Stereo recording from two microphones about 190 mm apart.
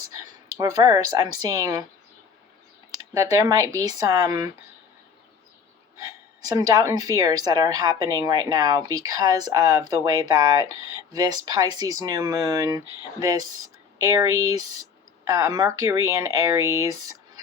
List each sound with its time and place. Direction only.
0.6 s a woman's voice: 20° right (ahead or behind)
3.2 s speech: 15° right (ahead or behind)
6.4 s a woman's voice: 20° right (ahead or behind)